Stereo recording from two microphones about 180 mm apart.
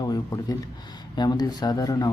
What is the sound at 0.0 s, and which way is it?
Speech, 20° left (ahead or behind).